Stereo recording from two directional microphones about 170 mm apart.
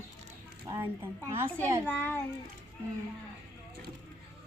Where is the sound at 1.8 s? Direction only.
10° left (ahead or behind).